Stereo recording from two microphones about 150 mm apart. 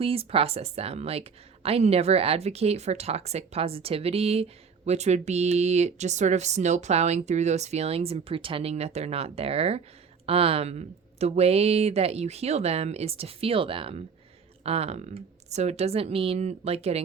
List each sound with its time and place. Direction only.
0.0 s speech: 40° right (ahead or behind)